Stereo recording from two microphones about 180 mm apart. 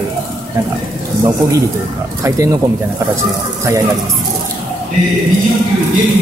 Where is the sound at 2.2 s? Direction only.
20° right (ahead or behind).